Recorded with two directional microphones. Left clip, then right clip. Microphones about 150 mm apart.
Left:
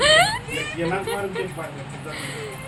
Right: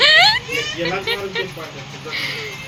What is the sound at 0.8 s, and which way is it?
Speech, 10° left (ahead or behind).